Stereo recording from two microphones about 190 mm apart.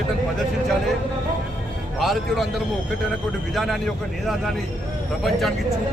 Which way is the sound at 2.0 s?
Centre (ahead or behind).